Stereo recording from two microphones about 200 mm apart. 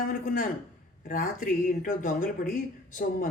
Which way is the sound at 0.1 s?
45° left (ahead or behind).